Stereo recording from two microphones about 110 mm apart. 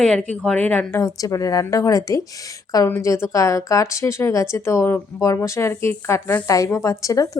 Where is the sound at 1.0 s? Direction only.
30° left (ahead or behind).